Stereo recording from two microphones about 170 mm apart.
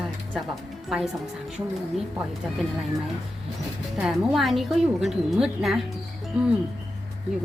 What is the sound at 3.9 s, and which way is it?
A woman's voice, 5° right (ahead or behind).